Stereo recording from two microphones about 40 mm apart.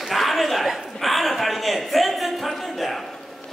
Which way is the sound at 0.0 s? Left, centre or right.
Centre.